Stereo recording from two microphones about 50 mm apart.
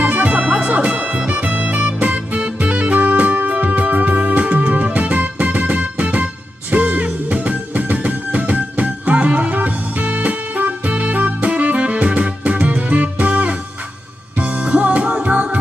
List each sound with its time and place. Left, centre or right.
0.0 s music: right